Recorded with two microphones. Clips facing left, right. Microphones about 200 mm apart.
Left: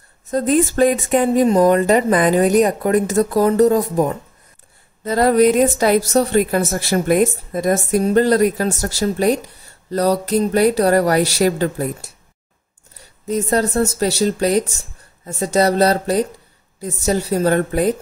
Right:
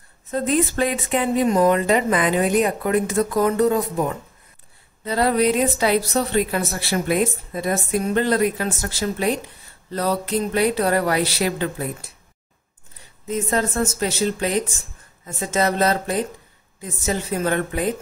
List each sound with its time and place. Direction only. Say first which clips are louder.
0.3 s a woman's voice: left 4 dB; 40° left (ahead or behind)
13.3 s speech: left 5 dB; 40° left (ahead or behind)